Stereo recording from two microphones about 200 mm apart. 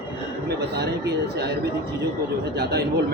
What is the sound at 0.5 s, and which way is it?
Speech, 55° right (ahead or behind).